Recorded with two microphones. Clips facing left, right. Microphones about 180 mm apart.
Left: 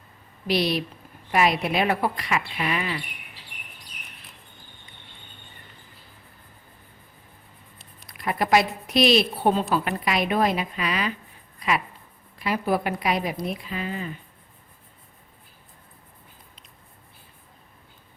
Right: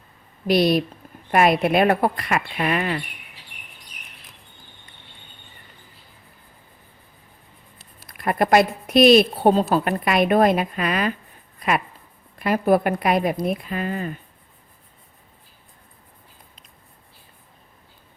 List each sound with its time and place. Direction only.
0.4 s speech: 50° right (ahead or behind)
8.0 s speech: 50° right (ahead or behind)
10.0 s speech: 55° right (ahead or behind)
12.4 s speech: 50° right (ahead or behind)